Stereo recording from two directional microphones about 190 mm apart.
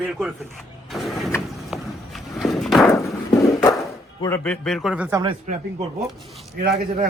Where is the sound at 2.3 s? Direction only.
Centre (ahead or behind).